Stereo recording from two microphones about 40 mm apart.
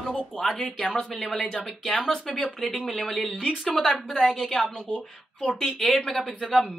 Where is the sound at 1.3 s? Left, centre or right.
Centre.